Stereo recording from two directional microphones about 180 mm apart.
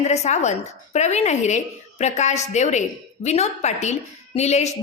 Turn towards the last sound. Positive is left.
turn(degrees=35)  # may be behind; listen again after turning